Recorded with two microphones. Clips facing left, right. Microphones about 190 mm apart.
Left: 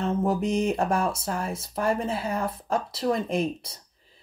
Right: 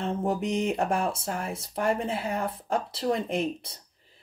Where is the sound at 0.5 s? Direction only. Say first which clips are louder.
Left 2 dB; 20° right (ahead or behind).